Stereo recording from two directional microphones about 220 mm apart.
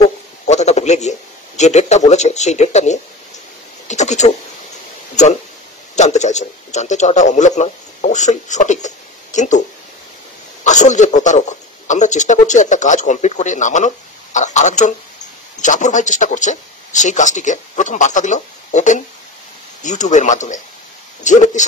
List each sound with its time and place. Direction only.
0.5 s a sound: 30° left (ahead or behind)
1.6 s a man's voice: 30° left (ahead or behind)
10.6 s a man's voice: 35° left (ahead or behind)